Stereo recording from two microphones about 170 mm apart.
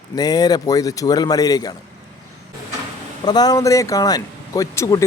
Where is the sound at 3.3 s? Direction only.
25° left (ahead or behind).